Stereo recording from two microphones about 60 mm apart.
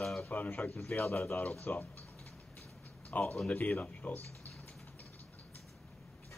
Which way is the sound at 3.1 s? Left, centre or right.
Left.